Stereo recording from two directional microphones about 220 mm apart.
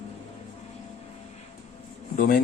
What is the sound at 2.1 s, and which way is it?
Speech, 40° left (ahead or behind).